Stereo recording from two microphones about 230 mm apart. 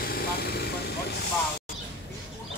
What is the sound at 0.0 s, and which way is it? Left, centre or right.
Vehicle, left.